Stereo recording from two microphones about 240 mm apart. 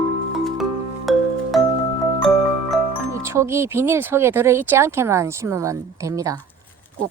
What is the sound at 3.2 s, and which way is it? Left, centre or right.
Speech, centre.